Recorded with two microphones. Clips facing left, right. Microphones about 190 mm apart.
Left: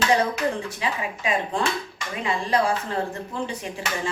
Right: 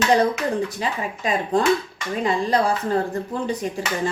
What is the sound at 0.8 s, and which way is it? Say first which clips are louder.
Speech: right 2 dB; 40° right (ahead or behind).